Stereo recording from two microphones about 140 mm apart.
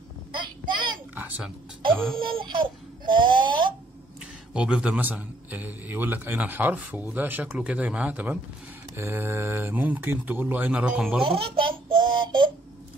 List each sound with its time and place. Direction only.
0.3 s child singing: 35° right (ahead or behind)
1.1 s music: 10° right (ahead or behind)
2.1 s a sound: 35° right (ahead or behind)
4.6 s a man's voice: 5° right (ahead or behind)
11.2 s a child's voice: 40° right (ahead or behind)